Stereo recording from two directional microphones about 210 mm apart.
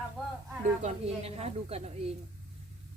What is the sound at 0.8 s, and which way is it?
Speech, 30° right (ahead or behind).